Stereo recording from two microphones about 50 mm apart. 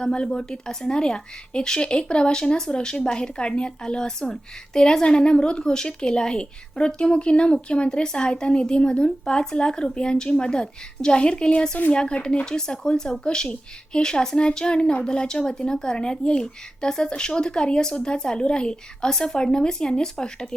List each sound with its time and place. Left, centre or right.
0.0 s speech: centre